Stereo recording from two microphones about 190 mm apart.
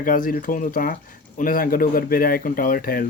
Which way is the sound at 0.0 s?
45° left (ahead or behind).